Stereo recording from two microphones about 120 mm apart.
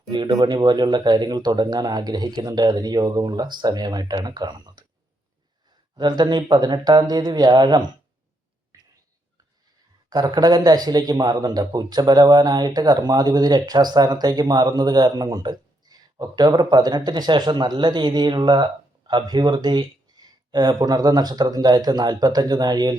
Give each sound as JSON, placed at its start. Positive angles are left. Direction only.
{"t": 0.1, "sound": "speech", "side_deg": -35}
{"t": 6.0, "sound": "speech", "side_deg": -35}
{"t": 8.7, "sound": "whispering", "side_deg": -30}
{"t": 10.1, "sound": "speech", "side_deg": -35}